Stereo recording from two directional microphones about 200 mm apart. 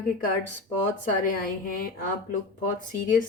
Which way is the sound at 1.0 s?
45° left (ahead or behind).